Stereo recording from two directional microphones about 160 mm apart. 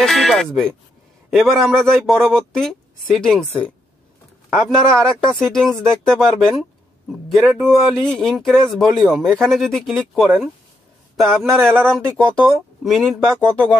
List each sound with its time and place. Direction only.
0.0 s speech: centre (ahead or behind)
12.8 s speech: centre (ahead or behind)